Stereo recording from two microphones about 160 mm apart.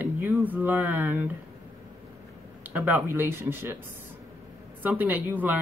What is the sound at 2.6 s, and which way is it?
Speech, 10° right (ahead or behind).